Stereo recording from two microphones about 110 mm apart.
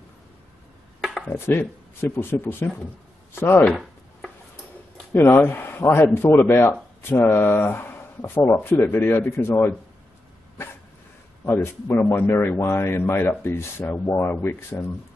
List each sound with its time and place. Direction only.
1.2 s speech: 20° left (ahead or behind)
5.3 s speech: 20° left (ahead or behind)
11.4 s speech: 20° left (ahead or behind)